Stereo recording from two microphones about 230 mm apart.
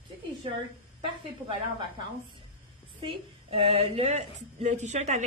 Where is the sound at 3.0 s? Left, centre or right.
Right.